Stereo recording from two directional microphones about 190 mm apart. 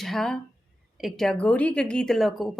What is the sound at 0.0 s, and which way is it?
A woman's voice, centre (ahead or behind).